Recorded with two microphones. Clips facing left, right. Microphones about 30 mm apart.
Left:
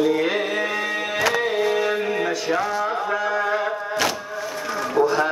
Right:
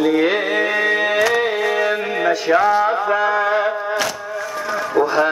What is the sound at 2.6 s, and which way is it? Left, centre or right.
Mantra, right.